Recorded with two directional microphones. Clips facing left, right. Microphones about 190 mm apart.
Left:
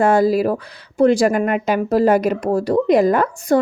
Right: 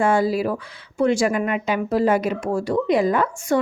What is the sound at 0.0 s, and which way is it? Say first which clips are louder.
Speech: left 5 dB; 40° left (ahead or behind).